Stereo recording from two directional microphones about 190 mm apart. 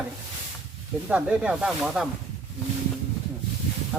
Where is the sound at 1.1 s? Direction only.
5° right (ahead or behind).